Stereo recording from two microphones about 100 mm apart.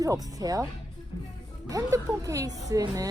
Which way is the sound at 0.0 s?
35° right (ahead or behind).